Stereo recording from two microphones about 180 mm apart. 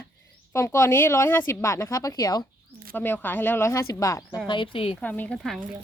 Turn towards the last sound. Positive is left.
turn(degrees=5)  # may be behind; listen again after turning